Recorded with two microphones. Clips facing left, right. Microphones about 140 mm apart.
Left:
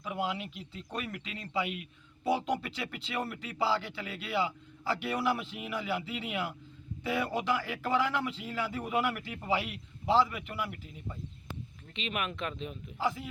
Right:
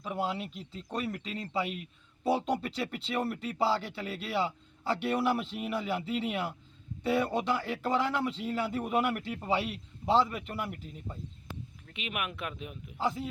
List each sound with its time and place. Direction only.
0.0 s a man's voice: 35° right (ahead or behind)
11.9 s speech: 10° right (ahead or behind)